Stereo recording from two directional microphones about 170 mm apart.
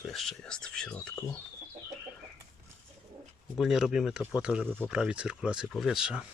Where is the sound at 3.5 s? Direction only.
5° right (ahead or behind).